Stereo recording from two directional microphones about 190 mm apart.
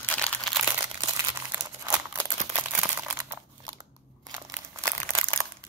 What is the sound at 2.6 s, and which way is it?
Crunch, 10° right (ahead or behind).